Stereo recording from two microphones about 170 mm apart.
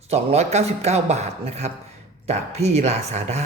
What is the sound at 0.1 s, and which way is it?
Speech, 40° right (ahead or behind).